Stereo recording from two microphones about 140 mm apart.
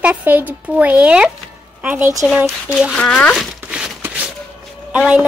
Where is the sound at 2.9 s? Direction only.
10° left (ahead or behind).